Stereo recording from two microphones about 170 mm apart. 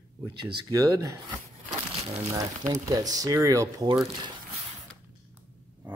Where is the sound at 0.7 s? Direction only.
20° right (ahead or behind).